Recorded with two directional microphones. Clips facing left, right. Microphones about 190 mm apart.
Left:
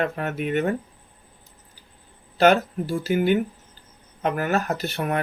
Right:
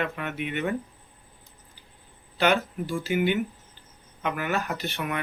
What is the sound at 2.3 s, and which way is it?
Speech, 40° left (ahead or behind).